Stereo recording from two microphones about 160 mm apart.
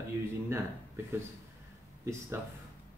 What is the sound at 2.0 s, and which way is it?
Speech, 15° right (ahead or behind).